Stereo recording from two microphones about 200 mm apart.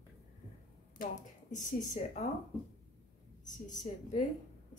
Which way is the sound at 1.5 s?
40° left (ahead or behind).